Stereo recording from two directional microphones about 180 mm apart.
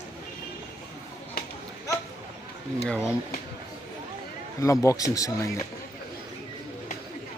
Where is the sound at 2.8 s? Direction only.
5° left (ahead or behind).